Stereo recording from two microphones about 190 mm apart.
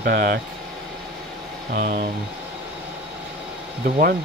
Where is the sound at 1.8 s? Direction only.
50° right (ahead or behind).